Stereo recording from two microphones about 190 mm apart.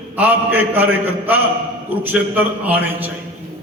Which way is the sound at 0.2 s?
10° right (ahead or behind).